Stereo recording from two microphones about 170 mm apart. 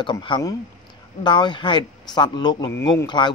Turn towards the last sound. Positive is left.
turn(degrees=25)  # may be behind; listen again after turning